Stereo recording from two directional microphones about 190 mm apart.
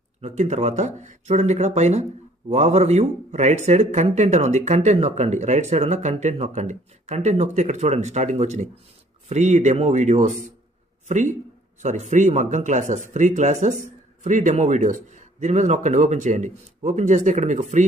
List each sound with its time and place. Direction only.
0.2 s speech: 35° right (ahead or behind)